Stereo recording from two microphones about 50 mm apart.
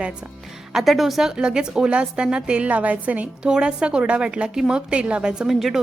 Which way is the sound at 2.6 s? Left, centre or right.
Right.